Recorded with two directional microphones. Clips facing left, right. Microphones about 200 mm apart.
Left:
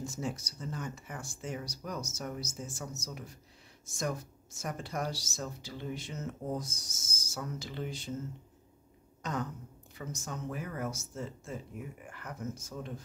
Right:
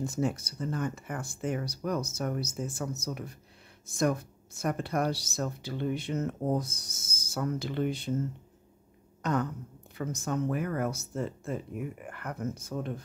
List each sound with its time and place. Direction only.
0.0 s speech: 60° right (ahead or behind)
9.2 s a sound: 60° right (ahead or behind)
9.9 s speech: 60° right (ahead or behind)